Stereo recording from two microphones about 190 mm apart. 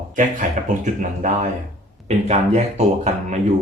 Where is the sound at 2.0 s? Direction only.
35° right (ahead or behind).